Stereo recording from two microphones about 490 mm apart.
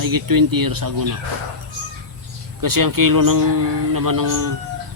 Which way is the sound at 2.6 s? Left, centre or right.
Right.